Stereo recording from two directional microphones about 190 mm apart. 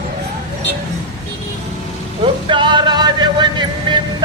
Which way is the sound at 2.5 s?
25° right (ahead or behind).